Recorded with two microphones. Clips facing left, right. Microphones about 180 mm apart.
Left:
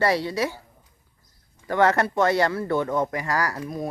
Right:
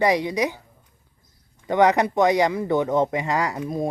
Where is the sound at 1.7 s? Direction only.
15° right (ahead or behind).